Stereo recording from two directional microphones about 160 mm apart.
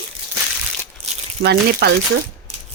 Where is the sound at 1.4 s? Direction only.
90° right.